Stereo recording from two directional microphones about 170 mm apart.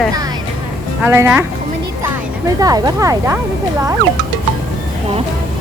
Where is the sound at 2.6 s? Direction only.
20° right (ahead or behind).